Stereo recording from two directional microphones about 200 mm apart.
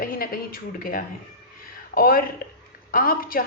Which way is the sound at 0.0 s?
45° left (ahead or behind).